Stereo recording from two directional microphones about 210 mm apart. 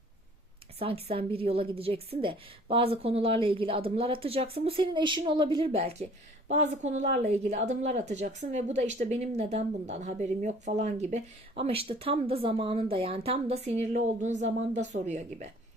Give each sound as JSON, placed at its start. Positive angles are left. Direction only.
{"t": 0.8, "sound": "a woman's voice", "side_deg": -25}